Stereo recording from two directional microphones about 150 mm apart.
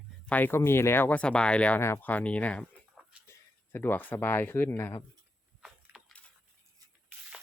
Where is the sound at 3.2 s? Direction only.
15° left (ahead or behind).